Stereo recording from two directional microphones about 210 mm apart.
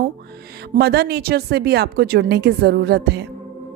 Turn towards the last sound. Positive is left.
turn(degrees=-50)  # may be behind; listen again after turning